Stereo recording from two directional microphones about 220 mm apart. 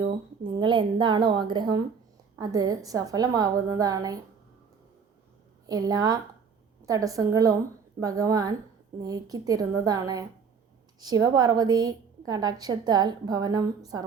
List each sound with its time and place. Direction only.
0.0 s a woman's voice: 20° right (ahead or behind)
5.6 s a woman's voice: 15° right (ahead or behind)